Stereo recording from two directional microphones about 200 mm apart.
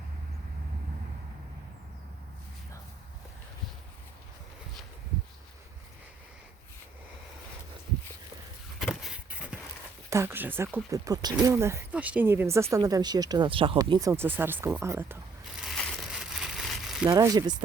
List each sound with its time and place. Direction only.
8.8 s a sound: centre (ahead or behind)
10.1 s speech: 15° right (ahead or behind)
17.1 s speech: 15° right (ahead or behind)